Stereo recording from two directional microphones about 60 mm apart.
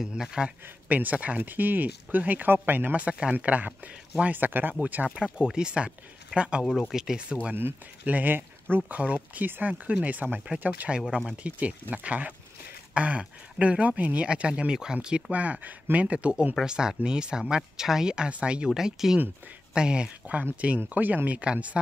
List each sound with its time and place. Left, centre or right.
0.2 s speech: centre
0.8 s speech: right
6.6 s speech: centre
8.0 s speech: right
8.9 s speech: right
11.0 s speech: centre
11.4 s speech: right